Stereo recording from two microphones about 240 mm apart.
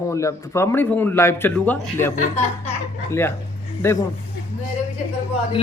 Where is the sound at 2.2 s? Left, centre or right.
Left.